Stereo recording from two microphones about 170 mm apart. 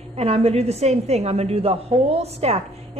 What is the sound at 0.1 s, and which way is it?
A woman's voice, 35° right (ahead or behind).